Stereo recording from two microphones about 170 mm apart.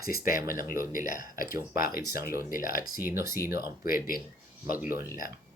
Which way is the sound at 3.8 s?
55° left (ahead or behind).